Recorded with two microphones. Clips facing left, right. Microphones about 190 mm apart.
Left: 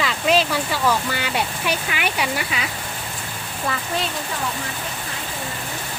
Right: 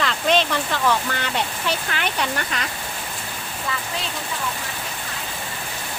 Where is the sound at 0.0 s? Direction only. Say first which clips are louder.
Left 1 dB; 5° left (ahead or behind).